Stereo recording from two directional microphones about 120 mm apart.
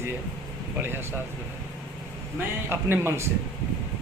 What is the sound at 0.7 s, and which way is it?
Speech, 20° right (ahead or behind).